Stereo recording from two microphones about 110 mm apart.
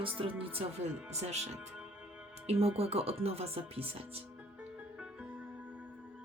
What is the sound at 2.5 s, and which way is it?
Speech, 70° right (ahead or behind).